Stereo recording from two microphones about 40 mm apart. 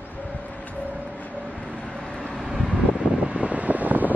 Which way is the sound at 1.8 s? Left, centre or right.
Centre.